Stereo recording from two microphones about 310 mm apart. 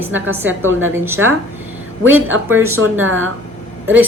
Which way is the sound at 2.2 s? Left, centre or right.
Right.